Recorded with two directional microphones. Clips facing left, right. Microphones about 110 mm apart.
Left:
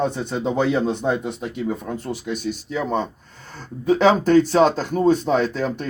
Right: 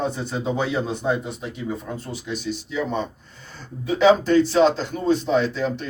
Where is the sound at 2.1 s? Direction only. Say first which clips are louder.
Left 2 dB; 50° left (ahead or behind).